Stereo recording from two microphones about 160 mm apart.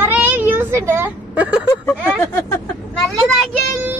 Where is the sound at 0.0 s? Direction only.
10° right (ahead or behind).